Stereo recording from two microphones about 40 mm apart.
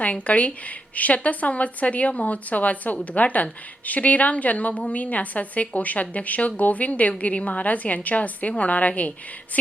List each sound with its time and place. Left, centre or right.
0.0 s speech: left